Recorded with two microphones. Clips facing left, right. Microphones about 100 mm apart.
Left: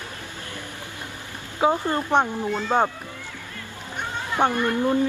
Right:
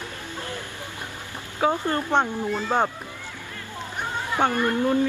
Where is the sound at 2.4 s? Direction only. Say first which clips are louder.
Left 1 dB; 5° right (ahead or behind).